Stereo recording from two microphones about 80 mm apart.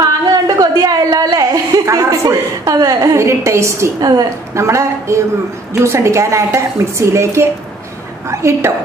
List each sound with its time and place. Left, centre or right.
0.0 s a sound: right
3.2 s a woman's voice: right
4.0 s a woman's voice: right
4.6 s a woman's voice: right